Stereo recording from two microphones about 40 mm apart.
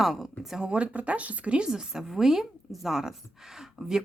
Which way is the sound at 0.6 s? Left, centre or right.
Right.